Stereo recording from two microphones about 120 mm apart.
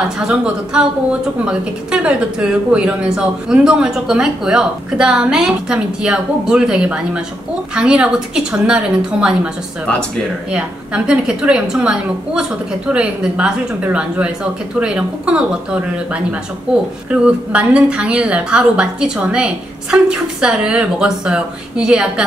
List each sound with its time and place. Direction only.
0.2 s a woman's voice: 10° right (ahead or behind)
10.5 s a woman's voice: 10° right (ahead or behind)